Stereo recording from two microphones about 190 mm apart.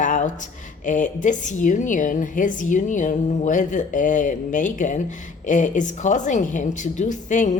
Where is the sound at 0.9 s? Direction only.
40° left (ahead or behind).